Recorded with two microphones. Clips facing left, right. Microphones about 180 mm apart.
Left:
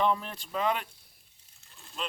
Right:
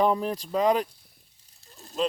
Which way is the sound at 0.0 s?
40° right (ahead or behind).